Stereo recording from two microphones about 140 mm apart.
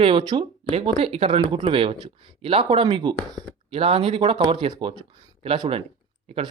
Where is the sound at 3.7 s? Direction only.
45° right (ahead or behind).